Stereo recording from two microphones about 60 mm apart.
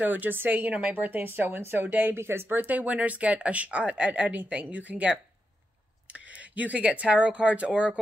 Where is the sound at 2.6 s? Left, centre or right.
Right.